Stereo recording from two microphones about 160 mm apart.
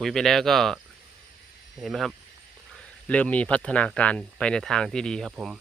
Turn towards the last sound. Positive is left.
turn(degrees=-5)  # may be behind; listen again after turning